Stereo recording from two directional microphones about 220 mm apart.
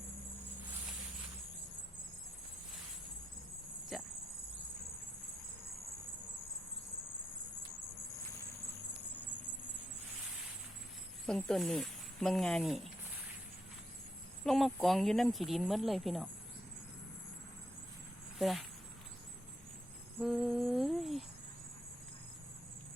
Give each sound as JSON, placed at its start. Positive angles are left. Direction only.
{"t": 11.3, "sound": "speech", "side_deg": 5}
{"t": 14.4, "sound": "speech", "side_deg": 0}
{"t": 18.3, "sound": "speech", "side_deg": 0}
{"t": 20.1, "sound": "humming", "side_deg": -5}